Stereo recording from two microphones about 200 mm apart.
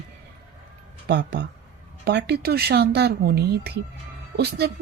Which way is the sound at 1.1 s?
60° right (ahead or behind).